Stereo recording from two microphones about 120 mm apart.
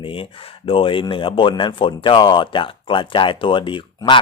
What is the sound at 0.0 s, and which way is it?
A man's voice, 45° left (ahead or behind).